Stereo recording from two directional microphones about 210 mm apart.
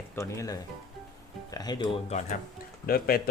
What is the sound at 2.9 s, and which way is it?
Speech, 45° left (ahead or behind).